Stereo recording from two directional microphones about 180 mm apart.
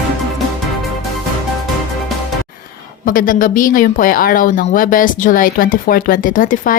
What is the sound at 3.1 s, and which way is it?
Speech, 50° left (ahead or behind).